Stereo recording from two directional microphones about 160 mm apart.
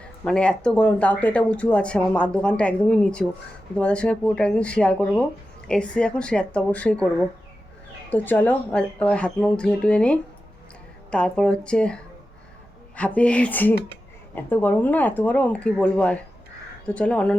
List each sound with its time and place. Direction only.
0.0 s speech: 5° left (ahead or behind)
13.0 s speech: 10° left (ahead or behind)